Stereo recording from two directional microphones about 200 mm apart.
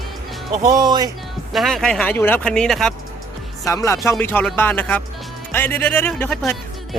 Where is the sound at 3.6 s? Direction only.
15° left (ahead or behind).